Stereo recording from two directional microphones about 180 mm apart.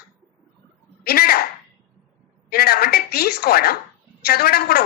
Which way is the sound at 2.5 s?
60° left (ahead or behind).